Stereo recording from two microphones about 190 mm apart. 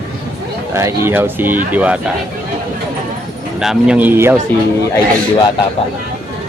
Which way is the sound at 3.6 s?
5° right (ahead or behind).